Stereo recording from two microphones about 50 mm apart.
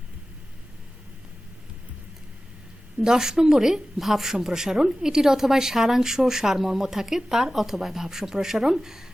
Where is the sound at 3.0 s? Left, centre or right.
Centre.